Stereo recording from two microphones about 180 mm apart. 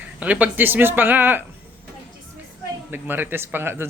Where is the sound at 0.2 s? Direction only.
10° right (ahead or behind).